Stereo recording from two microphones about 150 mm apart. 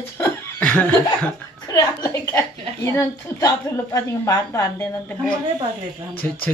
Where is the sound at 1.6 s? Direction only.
20° left (ahead or behind).